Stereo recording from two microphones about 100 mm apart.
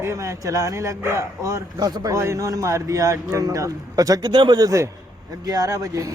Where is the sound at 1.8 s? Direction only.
40° right (ahead or behind).